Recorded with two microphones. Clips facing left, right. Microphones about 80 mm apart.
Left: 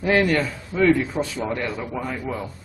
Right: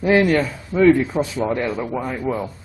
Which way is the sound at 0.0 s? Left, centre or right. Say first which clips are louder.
Right 3 dB; centre.